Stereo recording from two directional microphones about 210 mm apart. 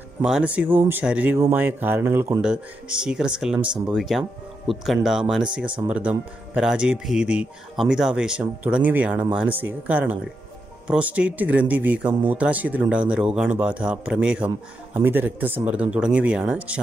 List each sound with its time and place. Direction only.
0.2 s speech: 5° right (ahead or behind)